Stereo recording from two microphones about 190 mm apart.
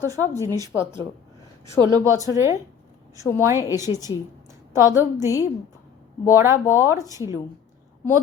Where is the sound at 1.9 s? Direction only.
15° right (ahead or behind).